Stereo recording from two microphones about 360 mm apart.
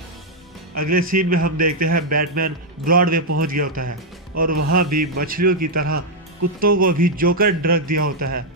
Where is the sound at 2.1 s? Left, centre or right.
Right.